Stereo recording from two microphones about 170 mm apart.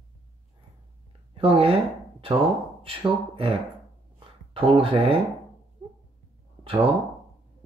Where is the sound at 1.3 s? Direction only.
30° right (ahead or behind).